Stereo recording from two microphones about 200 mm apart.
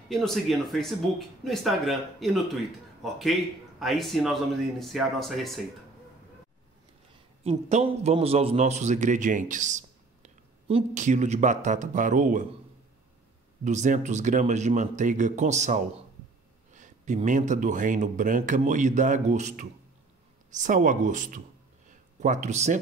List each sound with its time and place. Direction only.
0.1 s speech: centre (ahead or behind)
7.4 s a man's voice: 30° right (ahead or behind)
13.7 s a man's voice: 35° right (ahead or behind)